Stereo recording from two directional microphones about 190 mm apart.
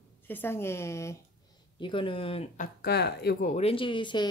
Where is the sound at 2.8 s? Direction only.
60° left (ahead or behind).